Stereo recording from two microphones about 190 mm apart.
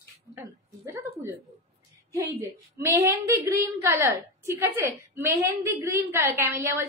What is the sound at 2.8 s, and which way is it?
A woman's voice, 15° right (ahead or behind).